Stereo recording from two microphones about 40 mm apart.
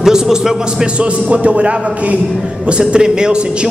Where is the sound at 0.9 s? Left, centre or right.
Right.